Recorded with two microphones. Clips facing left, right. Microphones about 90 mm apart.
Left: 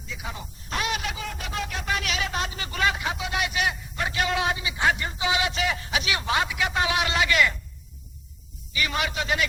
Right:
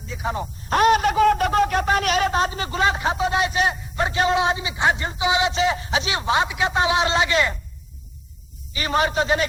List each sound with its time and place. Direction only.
0.1 s a man's voice: 35° right (ahead or behind)
8.7 s a man's voice: 35° right (ahead or behind)